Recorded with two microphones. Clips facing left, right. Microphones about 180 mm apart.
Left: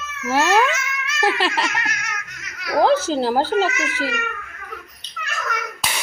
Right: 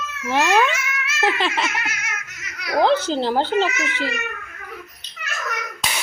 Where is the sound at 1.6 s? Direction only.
5° right (ahead or behind).